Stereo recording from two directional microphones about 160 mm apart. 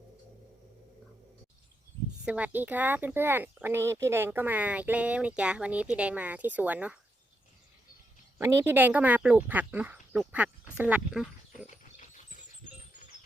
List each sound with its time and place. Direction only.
2.2 s speech: 10° right (ahead or behind)
8.4 s speech: 15° right (ahead or behind)
11.6 s ratchet: 55° left (ahead or behind)